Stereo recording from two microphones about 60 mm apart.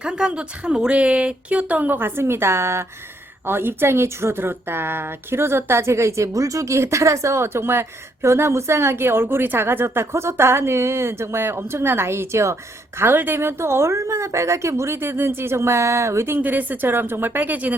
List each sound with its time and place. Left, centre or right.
0.0 s speech: centre; by 12.5 s right
13.0 s speech: right
16.4 s speech: right